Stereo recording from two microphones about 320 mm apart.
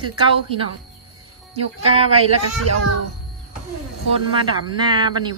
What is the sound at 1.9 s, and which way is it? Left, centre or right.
Speech, centre.